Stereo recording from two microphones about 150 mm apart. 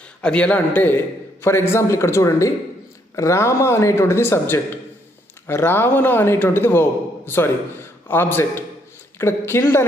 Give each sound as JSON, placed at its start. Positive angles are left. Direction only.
{"t": 0.2, "sound": "a man's voice", "side_deg": 5}